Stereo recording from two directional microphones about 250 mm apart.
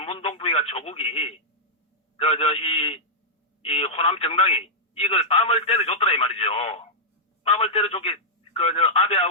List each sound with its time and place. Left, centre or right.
0.0 s speech: left